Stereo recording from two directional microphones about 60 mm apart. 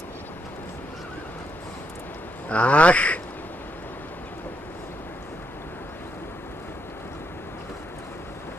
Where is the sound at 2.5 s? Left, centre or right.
Left.